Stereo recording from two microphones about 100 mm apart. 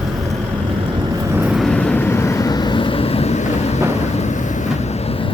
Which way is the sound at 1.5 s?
5° left (ahead or behind).